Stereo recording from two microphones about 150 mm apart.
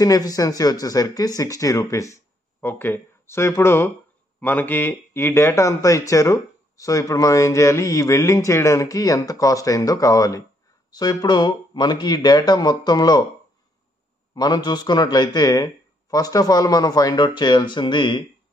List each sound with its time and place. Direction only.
0.0 s speech: 25° left (ahead or behind)
14.3 s speech: 25° left (ahead or behind)